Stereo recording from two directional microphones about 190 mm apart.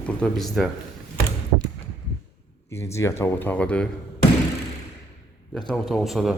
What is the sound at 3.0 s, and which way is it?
Speech, 15° left (ahead or behind).